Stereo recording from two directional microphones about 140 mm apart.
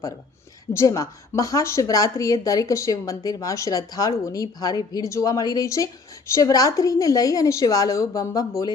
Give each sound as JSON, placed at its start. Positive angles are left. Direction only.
{"t": 0.7, "sound": "speech", "side_deg": 20}